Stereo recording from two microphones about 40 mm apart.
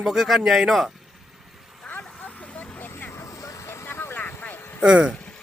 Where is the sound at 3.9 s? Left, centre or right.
Left.